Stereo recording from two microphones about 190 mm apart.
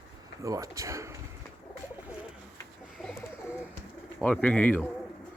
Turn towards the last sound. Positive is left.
turn(degrees=10)  # may be behind; listen again after turning